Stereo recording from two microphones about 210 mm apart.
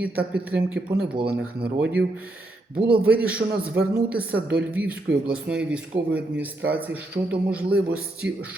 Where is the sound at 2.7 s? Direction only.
45° right (ahead or behind).